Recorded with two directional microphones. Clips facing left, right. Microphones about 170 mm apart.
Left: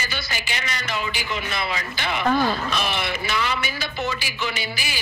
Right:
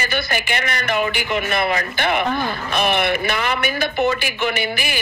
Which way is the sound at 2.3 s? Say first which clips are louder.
Left 2 dB; 20° right (ahead or behind).